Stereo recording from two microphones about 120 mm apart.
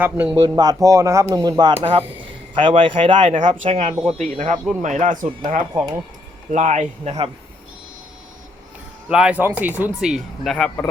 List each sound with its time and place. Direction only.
0.0 s speech: 10° right (ahead or behind)
0.4 s speech: 35° right (ahead or behind)
1.7 s speech: 55° right (ahead or behind)
3.2 s speech: 90° right
3.7 s speech: 50° right (ahead or behind)
4.4 s speech: 90° right
6.5 s speech: 75° right (ahead or behind)
9.0 s speech: 10° right (ahead or behind)